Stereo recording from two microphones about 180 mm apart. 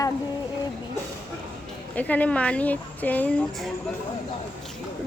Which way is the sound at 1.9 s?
10° left (ahead or behind).